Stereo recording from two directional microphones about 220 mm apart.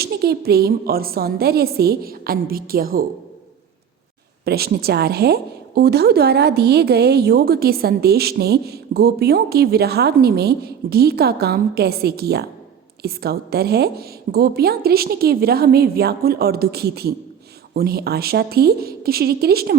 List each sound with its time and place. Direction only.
0.0 s a woman's voice: 45° right (ahead or behind)
4.4 s a woman's voice: 45° right (ahead or behind)